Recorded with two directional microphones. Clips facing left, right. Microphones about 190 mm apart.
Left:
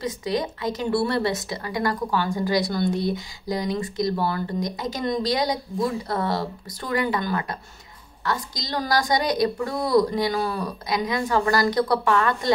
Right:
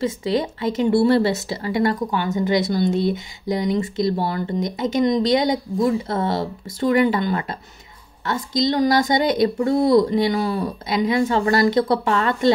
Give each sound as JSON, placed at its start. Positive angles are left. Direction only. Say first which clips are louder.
{"t": 0.0, "sound": "speech", "louder": "right 4 dB", "side_deg": -25}